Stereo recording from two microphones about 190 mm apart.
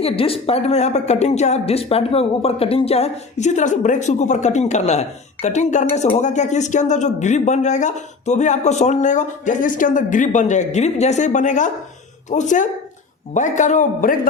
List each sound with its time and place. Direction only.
0.0 s speech: 30° left (ahead or behind)